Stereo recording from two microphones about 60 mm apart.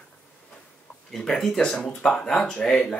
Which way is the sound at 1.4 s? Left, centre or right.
Centre.